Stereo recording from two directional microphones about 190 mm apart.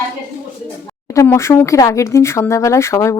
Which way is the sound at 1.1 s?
15° left (ahead or behind).